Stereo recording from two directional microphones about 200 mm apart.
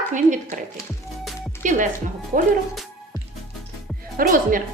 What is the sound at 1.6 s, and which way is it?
Speech, 40° right (ahead or behind).